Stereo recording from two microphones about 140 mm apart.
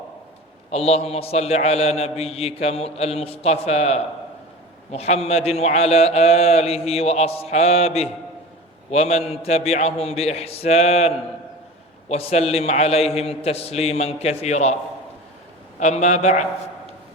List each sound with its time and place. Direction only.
0.7 s a man's voice: 50° left (ahead or behind)
15.8 s a man's voice: 55° left (ahead or behind)